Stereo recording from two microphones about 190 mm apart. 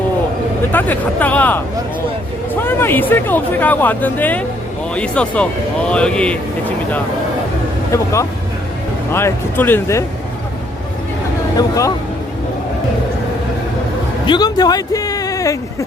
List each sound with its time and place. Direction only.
0.7 s speech: 10° left (ahead or behind)
7.9 s speech: 15° left (ahead or behind)
11.5 s speech: 20° left (ahead or behind)
14.3 s music: 20° left (ahead or behind)